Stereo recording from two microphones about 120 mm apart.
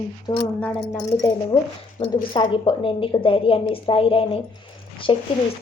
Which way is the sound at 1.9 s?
45° left (ahead or behind).